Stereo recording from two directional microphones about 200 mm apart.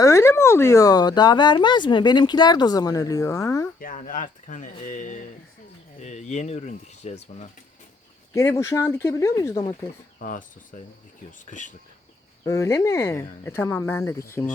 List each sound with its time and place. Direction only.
0.0 s speech: 15° left (ahead or behind)
3.8 s speech: 45° left (ahead or behind)
8.4 s speech: 15° left (ahead or behind)
10.2 s cricket: 40° left (ahead or behind)
10.7 s speech: 40° left (ahead or behind)
12.5 s speech: 15° left (ahead or behind)